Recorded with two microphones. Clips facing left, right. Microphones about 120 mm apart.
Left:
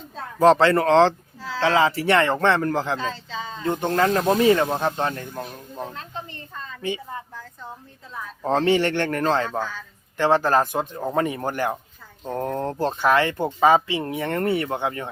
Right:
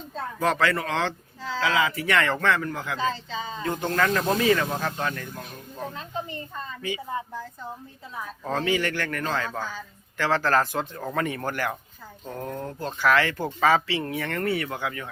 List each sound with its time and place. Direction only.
0.3 s speech: 30° left (ahead or behind)
3.0 s speech: centre (ahead or behind)
3.6 s speech: 25° left (ahead or behind)
5.3 s speech: 35° left (ahead or behind)
8.4 s speech: 30° left (ahead or behind)
12.2 s speech: 30° left (ahead or behind)